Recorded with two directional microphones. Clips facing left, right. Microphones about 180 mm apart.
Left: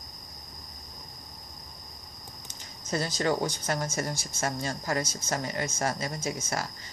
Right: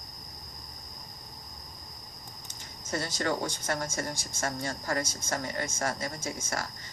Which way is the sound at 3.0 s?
15° left (ahead or behind).